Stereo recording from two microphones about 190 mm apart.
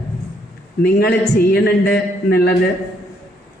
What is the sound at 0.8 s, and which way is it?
A woman's voice, 55° left (ahead or behind).